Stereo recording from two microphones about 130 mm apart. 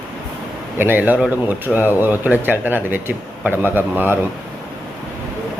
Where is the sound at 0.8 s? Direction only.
15° right (ahead or behind).